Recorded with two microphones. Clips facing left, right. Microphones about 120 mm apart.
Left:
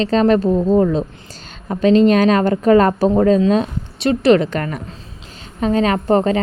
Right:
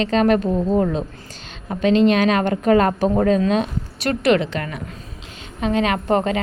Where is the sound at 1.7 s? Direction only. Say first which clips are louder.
Left 4 dB; 35° left (ahead or behind).